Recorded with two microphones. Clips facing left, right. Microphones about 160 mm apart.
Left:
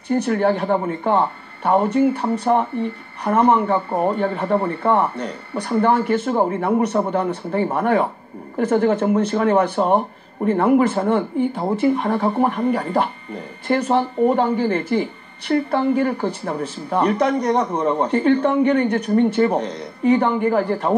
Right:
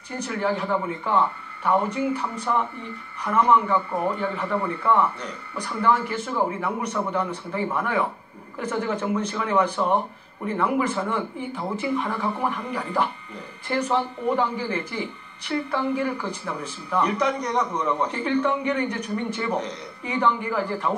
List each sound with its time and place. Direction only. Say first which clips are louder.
0.1 s speech: left 8 dB; 50° left (ahead or behind)
3.7 s speech: left 4 dB; 35° left (ahead or behind)
4.1 s speech: left 6 dB; 50° left (ahead or behind)